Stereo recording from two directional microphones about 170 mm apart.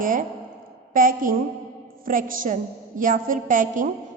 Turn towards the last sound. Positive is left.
turn(degrees=-50)  # may be behind; listen again after turning